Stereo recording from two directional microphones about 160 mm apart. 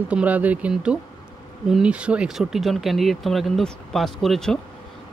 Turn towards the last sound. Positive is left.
turn(degrees=0)  # may be behind; listen again after turning